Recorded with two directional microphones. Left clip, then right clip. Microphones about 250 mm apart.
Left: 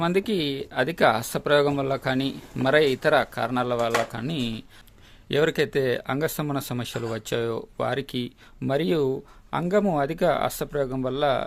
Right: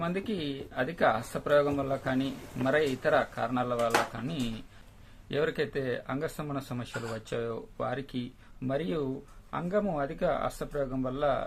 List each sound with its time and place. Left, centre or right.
0.0 s speech: left